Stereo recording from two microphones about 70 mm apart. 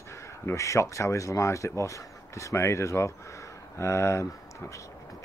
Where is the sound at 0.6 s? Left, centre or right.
Left.